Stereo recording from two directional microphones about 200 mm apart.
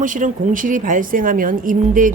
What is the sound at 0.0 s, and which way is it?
Speech, 40° right (ahead or behind).